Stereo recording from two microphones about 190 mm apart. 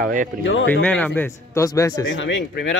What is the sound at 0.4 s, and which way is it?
Speech, 80° left.